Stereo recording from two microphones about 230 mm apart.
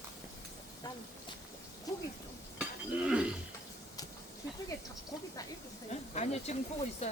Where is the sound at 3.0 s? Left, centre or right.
Centre.